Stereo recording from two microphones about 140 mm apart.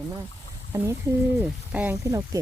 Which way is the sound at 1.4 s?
10° right (ahead or behind).